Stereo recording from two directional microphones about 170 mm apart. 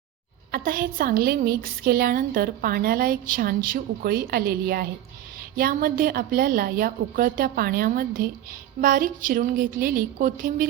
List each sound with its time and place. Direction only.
0.5 s a woman's voice: 60° right (ahead or behind)